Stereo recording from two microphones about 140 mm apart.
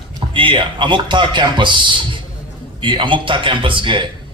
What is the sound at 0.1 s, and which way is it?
Speech, 35° right (ahead or behind).